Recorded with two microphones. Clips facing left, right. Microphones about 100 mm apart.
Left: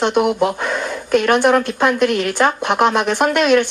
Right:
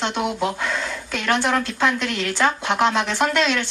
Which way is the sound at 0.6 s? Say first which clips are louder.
Left 4 dB; 15° left (ahead or behind).